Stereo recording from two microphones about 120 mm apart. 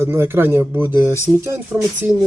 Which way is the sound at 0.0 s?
20° right (ahead or behind).